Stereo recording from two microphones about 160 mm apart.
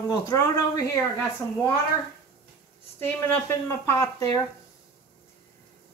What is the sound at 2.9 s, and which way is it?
Speech, 15° left (ahead or behind).